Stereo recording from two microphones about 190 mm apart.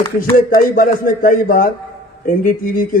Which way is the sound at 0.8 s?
45° left (ahead or behind).